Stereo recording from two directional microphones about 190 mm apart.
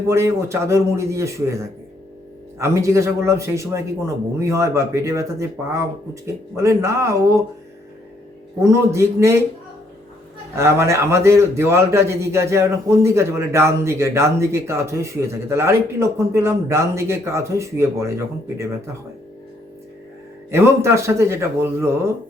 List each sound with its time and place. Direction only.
0.1 s a man's voice: 15° right (ahead or behind)
2.6 s a man's voice: 15° right (ahead or behind)
8.7 s a man's voice: 15° right (ahead or behind)
10.5 s a man's voice: 15° right (ahead or behind)
20.5 s a man's voice: 15° right (ahead or behind)